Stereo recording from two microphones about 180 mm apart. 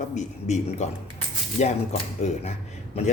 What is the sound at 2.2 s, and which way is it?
Speech, 40° left (ahead or behind).